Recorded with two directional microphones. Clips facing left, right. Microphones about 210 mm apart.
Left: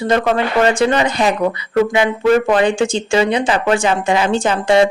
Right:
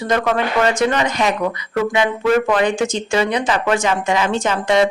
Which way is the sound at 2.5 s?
30° left (ahead or behind).